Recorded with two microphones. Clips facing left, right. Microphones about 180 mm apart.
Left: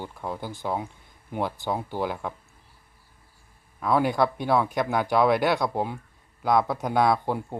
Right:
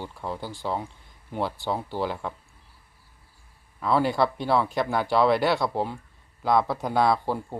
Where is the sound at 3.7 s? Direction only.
Centre (ahead or behind).